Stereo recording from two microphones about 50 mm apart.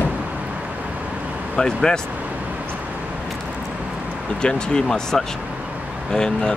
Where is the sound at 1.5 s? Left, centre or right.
Centre.